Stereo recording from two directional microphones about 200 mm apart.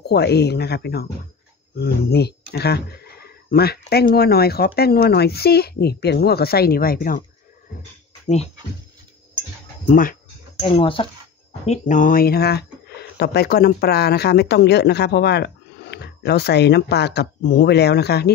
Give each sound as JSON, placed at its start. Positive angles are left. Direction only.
{"t": 0.0, "sound": "speech", "side_deg": 55}
{"t": 9.8, "sound": "speech", "side_deg": 45}
{"t": 10.6, "sound": "speech", "side_deg": 25}
{"t": 11.6, "sound": "speech", "side_deg": 35}